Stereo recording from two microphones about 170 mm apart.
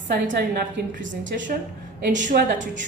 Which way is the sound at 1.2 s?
90° right.